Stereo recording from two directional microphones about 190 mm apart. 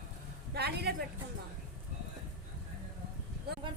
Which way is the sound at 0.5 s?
60° right (ahead or behind).